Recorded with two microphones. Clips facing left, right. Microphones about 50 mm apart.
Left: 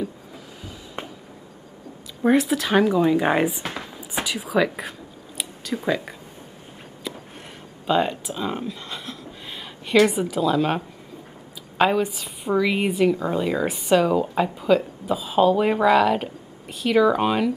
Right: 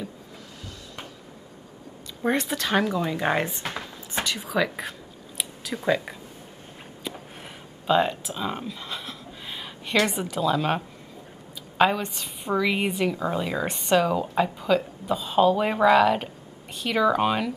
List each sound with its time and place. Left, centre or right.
1.0 s a sound: left
2.2 s a woman's voice: centre
5.4 s a sound: centre
5.9 s a woman's voice: centre
7.8 s speech: centre
11.8 s a woman's voice: centre